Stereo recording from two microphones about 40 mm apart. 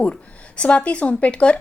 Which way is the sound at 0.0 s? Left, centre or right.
Left.